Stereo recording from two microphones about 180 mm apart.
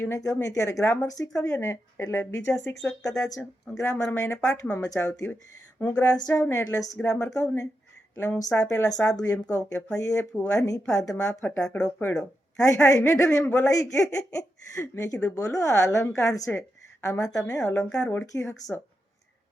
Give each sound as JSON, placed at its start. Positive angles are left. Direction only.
{"t": 0.0, "sound": "a woman's voice", "side_deg": 15}
{"t": 17.6, "sound": "speech", "side_deg": 5}